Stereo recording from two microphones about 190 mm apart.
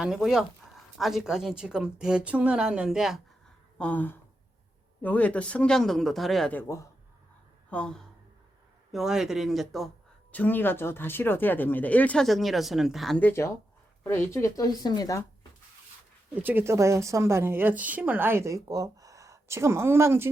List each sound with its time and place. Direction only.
0.0 s speech: centre (ahead or behind)
3.8 s speech: 10° left (ahead or behind)
16.3 s a woman's voice: 10° right (ahead or behind)